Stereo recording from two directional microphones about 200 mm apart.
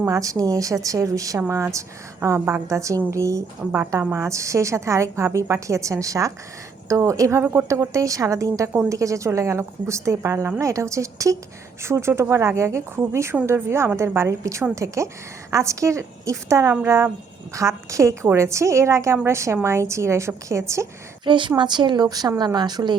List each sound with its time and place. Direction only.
0.0 s a woman's voice: 15° right (ahead or behind)